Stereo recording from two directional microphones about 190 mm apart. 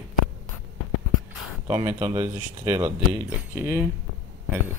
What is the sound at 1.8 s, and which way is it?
Speech, 10° right (ahead or behind).